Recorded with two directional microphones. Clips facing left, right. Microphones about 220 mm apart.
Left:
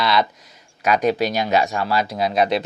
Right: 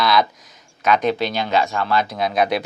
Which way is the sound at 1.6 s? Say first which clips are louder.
Even; 15° left (ahead or behind).